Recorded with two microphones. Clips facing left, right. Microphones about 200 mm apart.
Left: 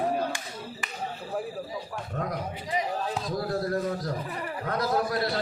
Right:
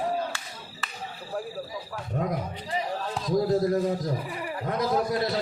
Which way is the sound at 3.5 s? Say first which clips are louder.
Right 2 dB; 20° right (ahead or behind).